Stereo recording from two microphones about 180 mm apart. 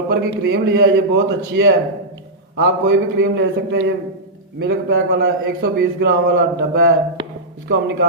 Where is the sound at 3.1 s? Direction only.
80° right.